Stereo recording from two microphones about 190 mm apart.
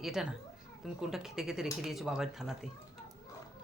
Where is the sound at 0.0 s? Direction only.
Centre (ahead or behind).